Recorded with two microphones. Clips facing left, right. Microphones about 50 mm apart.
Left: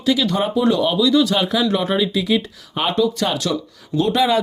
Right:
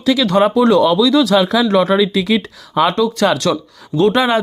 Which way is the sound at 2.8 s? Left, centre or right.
Right.